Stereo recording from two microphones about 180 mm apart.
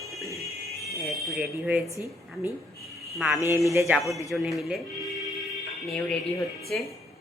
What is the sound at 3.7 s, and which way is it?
Speech, 15° right (ahead or behind).